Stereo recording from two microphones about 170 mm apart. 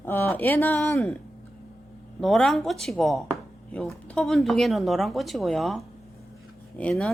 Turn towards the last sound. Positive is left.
turn(degrees=5)  # may be behind; listen again after turning